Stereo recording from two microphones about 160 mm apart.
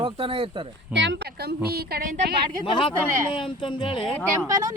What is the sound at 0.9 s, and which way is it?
A woman's voice, 85° right.